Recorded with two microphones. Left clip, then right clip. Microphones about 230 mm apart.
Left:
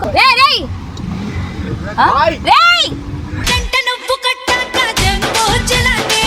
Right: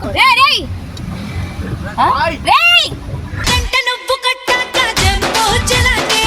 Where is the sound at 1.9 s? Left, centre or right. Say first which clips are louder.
Left 2 dB; centre.